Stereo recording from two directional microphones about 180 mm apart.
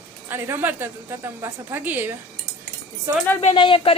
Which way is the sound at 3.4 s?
30° left (ahead or behind).